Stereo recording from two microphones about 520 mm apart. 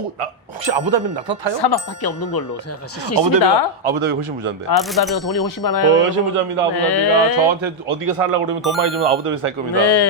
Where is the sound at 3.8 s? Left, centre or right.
Right.